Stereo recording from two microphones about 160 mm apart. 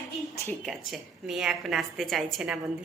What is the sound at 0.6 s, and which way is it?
Speech, centre (ahead or behind).